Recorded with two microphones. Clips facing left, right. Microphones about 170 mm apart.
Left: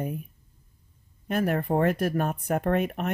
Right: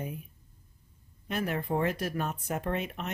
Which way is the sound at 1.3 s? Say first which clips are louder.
Left 6 dB; 50° left (ahead or behind).